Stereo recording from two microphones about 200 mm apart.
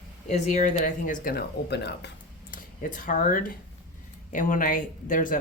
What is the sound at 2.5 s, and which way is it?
Speech, 45° left (ahead or behind).